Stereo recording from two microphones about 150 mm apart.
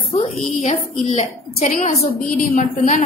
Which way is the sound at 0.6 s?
50° left (ahead or behind).